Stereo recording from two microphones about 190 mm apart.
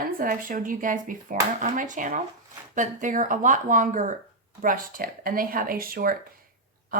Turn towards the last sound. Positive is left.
turn(degrees=-50)  # may be behind; listen again after turning